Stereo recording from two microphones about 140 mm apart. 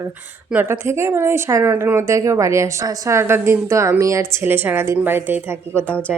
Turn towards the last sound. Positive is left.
turn(degrees=10)  # may be behind; listen again after turning